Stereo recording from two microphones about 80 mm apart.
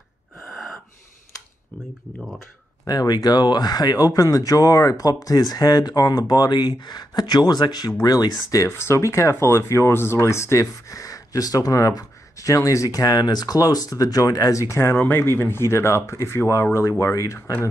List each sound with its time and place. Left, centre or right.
2.9 s speech: left
8.6 s speech: left